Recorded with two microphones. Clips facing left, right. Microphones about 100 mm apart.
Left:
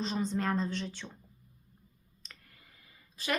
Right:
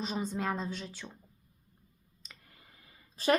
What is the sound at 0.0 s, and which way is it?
A woman's voice, 10° right (ahead or behind).